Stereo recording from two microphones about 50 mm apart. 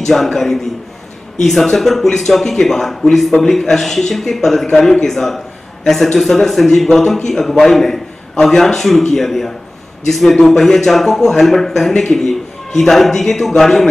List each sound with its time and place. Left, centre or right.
0.0 s a man's voice: centre
11.9 s a man's voice: centre
12.7 s a man's voice: centre